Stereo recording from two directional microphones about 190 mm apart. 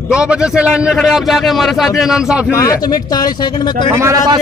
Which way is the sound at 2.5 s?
15° left (ahead or behind).